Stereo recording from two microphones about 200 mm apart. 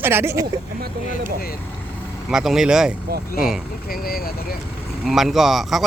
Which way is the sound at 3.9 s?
45° left (ahead or behind).